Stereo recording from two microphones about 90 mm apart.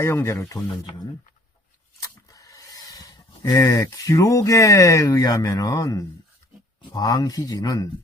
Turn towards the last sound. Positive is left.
turn(degrees=45)  # may be behind; listen again after turning